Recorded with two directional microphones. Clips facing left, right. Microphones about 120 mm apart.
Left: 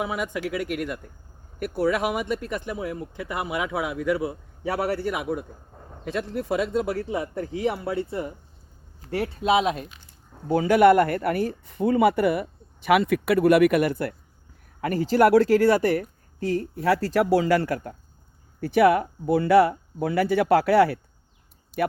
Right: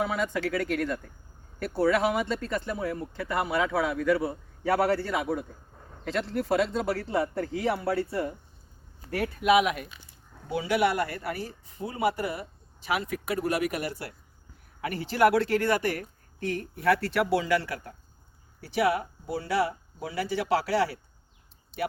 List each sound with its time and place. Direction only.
0.0 s a man's voice: 15° left (ahead or behind)
10.5 s speech: 45° left (ahead or behind)
14.8 s a woman's voice: 40° left (ahead or behind)